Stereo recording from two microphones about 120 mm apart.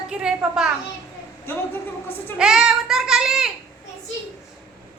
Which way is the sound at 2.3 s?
5° right (ahead or behind).